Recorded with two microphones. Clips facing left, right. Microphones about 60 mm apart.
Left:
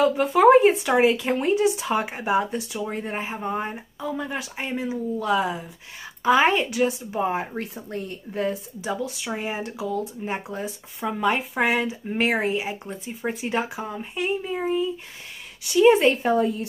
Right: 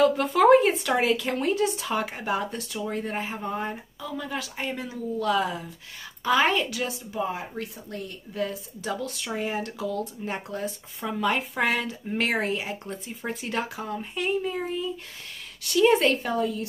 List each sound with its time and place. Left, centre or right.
0.0 s speech: centre; by 8.5 s left
8.8 s speech: centre; by 16.6 s left